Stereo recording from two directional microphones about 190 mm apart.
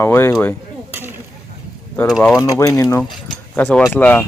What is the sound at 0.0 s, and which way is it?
Speech, 15° left (ahead or behind).